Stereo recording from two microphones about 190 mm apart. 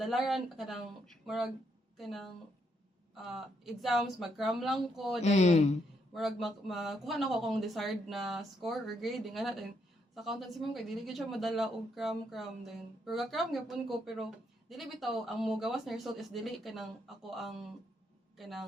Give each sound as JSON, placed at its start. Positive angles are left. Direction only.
{"t": 0.0, "sound": "speech", "side_deg": 0}
{"t": 5.2, "sound": "speech", "side_deg": 35}
{"t": 6.1, "sound": "a man's voice", "side_deg": 0}